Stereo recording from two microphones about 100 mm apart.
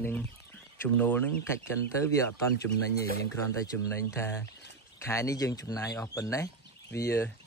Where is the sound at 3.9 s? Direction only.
25° left (ahead or behind).